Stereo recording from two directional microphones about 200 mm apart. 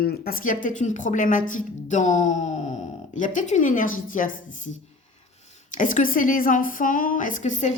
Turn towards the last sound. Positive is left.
turn(degrees=35)  # may be behind; listen again after turning